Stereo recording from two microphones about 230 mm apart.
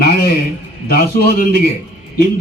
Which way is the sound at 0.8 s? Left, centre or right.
Left.